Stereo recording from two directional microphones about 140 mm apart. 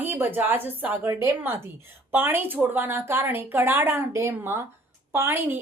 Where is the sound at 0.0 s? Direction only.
15° right (ahead or behind).